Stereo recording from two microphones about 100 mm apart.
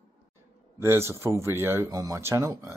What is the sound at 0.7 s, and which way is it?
Speech, 25° right (ahead or behind).